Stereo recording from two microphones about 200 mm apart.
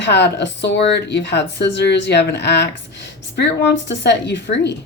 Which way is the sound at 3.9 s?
60° left (ahead or behind).